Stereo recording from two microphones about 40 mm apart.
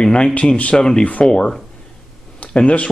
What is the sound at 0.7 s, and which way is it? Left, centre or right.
Speech, centre.